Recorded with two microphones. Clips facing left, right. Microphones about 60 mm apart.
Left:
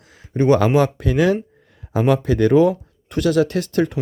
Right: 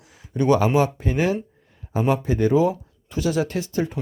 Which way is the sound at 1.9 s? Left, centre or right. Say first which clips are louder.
Left 4 dB; left.